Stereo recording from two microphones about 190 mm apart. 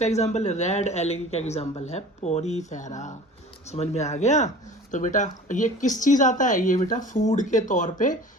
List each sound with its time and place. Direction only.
0.0 s speech: 35° left (ahead or behind)